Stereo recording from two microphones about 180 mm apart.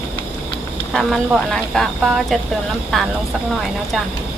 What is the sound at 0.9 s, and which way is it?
Speech, centre (ahead or behind).